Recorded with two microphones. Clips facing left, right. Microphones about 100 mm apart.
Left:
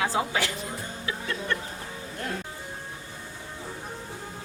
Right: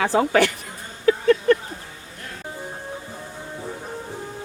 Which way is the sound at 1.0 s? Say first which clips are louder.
Right 15 dB; 55° right (ahead or behind).